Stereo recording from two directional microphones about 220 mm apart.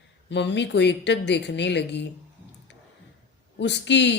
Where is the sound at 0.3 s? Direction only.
55° left (ahead or behind).